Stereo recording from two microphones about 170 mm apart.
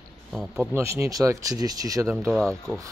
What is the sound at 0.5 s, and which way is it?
Speech, 15° right (ahead or behind).